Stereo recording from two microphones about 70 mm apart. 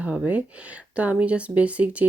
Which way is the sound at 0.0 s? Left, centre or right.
Centre.